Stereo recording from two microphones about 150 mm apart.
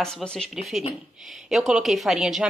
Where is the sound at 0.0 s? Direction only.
5° left (ahead or behind).